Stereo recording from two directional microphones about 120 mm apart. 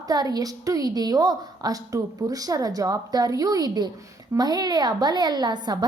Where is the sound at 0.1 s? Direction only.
30° right (ahead or behind).